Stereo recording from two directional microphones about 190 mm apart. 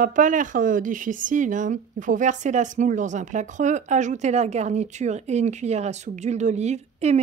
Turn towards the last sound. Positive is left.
turn(degrees=-35)  # may be behind; listen again after turning